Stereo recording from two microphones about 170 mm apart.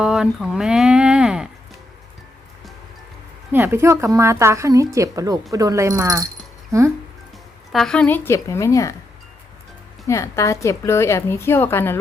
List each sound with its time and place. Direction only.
0.0 s speech: 5° right (ahead or behind)
3.5 s a woman's voice: 15° right (ahead or behind)
7.7 s a woman's voice: centre (ahead or behind); by 9.0 s 20° left (ahead or behind)
10.1 s a woman's voice: 20° left (ahead or behind)